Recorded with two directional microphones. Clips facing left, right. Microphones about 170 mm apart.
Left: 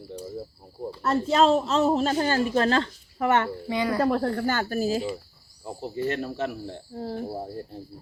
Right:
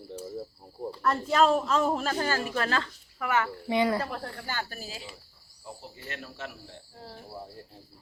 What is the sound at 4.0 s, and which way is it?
Speech, 50° left (ahead or behind).